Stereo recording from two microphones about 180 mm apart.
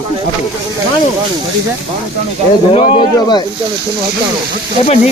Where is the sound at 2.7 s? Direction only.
25° left (ahead or behind).